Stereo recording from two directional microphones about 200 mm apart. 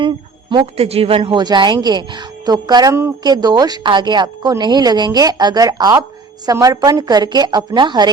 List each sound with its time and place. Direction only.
0.0 s a woman's voice: 25° right (ahead or behind)